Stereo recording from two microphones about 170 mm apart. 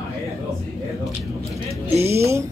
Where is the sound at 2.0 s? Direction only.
15° right (ahead or behind).